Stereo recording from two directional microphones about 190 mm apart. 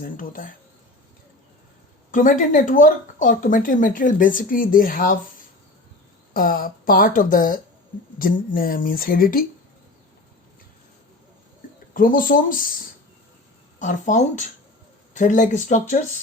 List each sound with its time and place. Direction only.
0.0 s speech: 45° left (ahead or behind)
2.0 s speech: 45° left (ahead or behind)
6.3 s speech: 50° left (ahead or behind)
11.9 s speech: 45° left (ahead or behind)
13.7 s speech: 40° left (ahead or behind)